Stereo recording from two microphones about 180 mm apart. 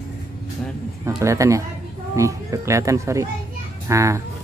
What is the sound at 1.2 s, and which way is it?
Speech, 15° right (ahead or behind).